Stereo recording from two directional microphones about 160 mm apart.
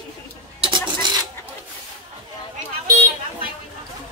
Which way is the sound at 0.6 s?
30° right (ahead or behind).